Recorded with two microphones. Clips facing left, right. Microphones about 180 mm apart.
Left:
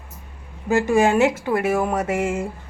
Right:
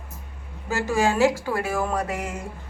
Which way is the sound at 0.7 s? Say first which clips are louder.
Left 5 dB; 20° left (ahead or behind).